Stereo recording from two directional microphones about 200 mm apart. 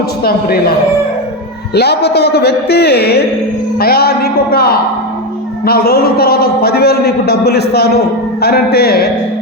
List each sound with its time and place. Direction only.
0.3 s a man's voice: 50° left (ahead or behind)
1.7 s a man's voice: 55° left (ahead or behind)